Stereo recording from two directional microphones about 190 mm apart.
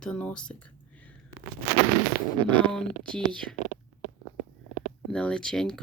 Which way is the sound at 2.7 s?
5° left (ahead or behind).